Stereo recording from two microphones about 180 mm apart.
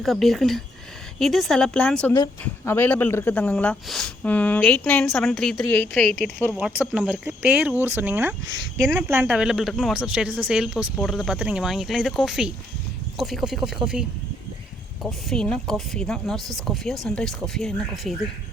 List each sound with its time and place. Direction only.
0.0 s speech: centre (ahead or behind)
6.6 s speech: 5° right (ahead or behind)
15.0 s speech: 5° left (ahead or behind)